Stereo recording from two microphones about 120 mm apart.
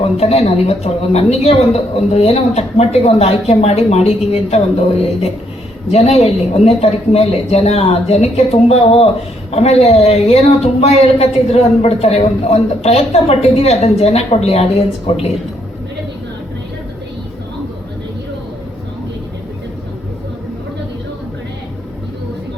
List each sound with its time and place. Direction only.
0.0 s speech: 60° left (ahead or behind)